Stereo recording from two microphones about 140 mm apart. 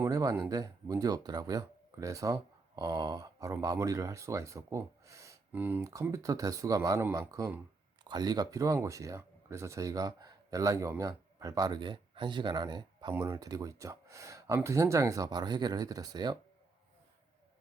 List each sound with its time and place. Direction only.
0.0 s speech: 25° right (ahead or behind)
13.1 s speech: 20° right (ahead or behind)